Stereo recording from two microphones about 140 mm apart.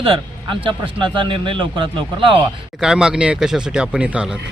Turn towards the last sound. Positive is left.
turn(degrees=-10)  # may be behind; listen again after turning